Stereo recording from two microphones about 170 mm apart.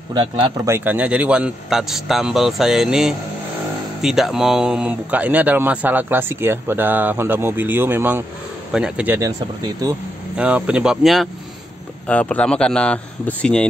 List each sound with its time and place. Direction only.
0.1 s speech: 25° right (ahead or behind)
0.7 s a man's voice: 10° right (ahead or behind)
9.6 s speech: 20° right (ahead or behind)
10.3 s a man's voice: 5° right (ahead or behind)